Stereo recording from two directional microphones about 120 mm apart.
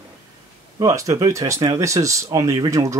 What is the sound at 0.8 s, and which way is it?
Speech, 25° right (ahead or behind).